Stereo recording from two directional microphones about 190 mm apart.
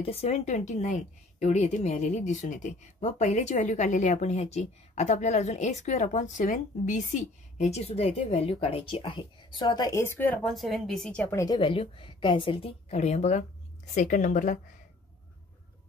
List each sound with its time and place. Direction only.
0.0 s a woman's voice: 30° left (ahead or behind)